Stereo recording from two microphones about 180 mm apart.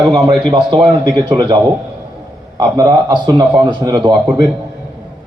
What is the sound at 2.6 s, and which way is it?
A man's voice, 20° right (ahead or behind).